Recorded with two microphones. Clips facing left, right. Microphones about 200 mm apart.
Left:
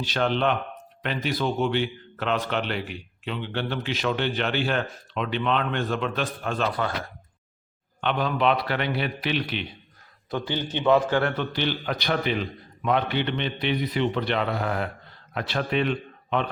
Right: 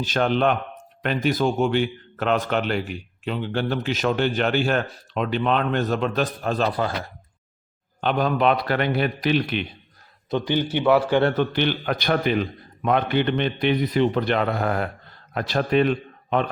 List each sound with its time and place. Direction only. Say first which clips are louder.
0.0 s a man's voice: right 3 dB; 45° right (ahead or behind)
8.0 s a man's voice: right 3 dB; 45° right (ahead or behind)
10.2 s a man's voice: right 6 dB; 20° right (ahead or behind)
11.2 s a man's voice: right 6 dB; 35° right (ahead or behind)
11.5 s a man's voice: right 4 dB; 55° right (ahead or behind)